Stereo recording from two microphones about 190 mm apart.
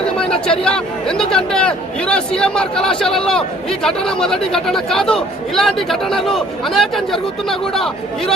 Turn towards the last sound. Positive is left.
turn(degrees=0)  # may be behind; listen again after turning